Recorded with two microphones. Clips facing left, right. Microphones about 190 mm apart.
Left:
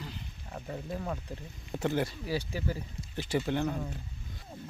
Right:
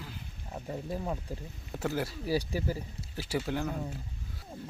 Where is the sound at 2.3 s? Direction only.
40° right (ahead or behind).